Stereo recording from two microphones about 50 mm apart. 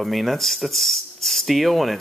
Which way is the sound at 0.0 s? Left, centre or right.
Centre.